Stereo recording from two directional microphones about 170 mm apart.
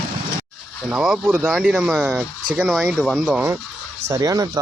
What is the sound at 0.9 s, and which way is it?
Speech, 5° right (ahead or behind).